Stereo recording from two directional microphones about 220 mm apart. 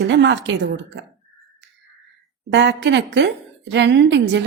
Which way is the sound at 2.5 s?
55° right (ahead or behind).